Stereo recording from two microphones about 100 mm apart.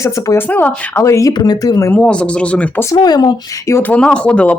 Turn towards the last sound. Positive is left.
turn(degrees=10)  # may be behind; listen again after turning